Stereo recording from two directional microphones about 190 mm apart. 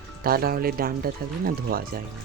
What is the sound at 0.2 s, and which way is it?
Speech, 50° right (ahead or behind).